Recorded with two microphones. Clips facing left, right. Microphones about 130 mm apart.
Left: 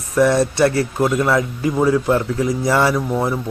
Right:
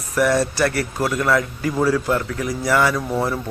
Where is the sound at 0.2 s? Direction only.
25° left (ahead or behind).